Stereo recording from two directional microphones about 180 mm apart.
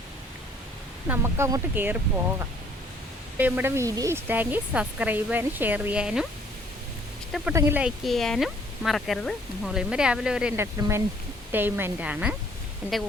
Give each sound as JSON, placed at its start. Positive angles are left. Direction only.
{"t": 1.0, "sound": "speech", "side_deg": -10}
{"t": 3.3, "sound": "speech", "side_deg": -10}
{"t": 7.5, "sound": "speech", "side_deg": -10}
{"t": 10.8, "sound": "speech", "side_deg": -15}